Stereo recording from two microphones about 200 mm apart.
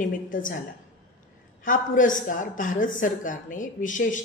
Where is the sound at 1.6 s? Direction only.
40° left (ahead or behind).